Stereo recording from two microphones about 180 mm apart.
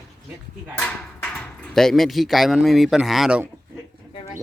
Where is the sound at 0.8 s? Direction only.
5° left (ahead or behind).